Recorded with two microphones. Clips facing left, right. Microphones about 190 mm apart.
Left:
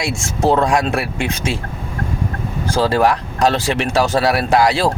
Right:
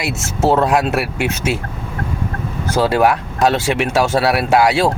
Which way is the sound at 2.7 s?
5° right (ahead or behind).